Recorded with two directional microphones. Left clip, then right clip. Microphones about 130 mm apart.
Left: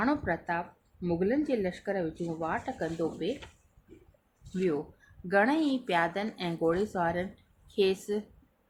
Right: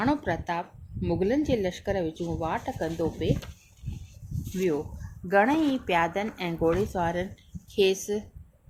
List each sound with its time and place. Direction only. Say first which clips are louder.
0.0 s speech: right 3 dB; 50° right (ahead or behind)
4.5 s speech: right 3 dB; 35° right (ahead or behind)
6.7 s speech: right 2 dB; 45° right (ahead or behind)